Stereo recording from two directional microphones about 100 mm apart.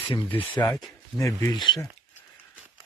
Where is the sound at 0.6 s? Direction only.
35° left (ahead or behind).